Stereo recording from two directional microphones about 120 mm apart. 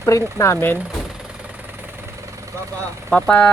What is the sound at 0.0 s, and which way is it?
Speech, 25° left (ahead or behind).